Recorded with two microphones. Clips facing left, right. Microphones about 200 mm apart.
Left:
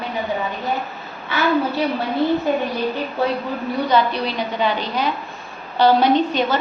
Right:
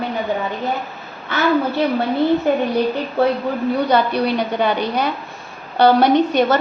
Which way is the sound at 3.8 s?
60° right (ahead or behind).